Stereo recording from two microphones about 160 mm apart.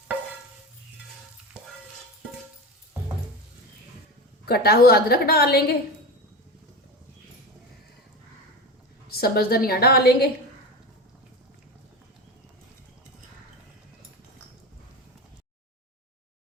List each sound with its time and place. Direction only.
4.4 s a woman's voice: 75° left (ahead or behind)
9.0 s a woman's voice: 75° left (ahead or behind)